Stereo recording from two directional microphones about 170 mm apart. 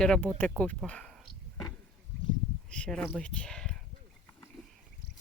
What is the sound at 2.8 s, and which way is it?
Speech, 5° left (ahead or behind).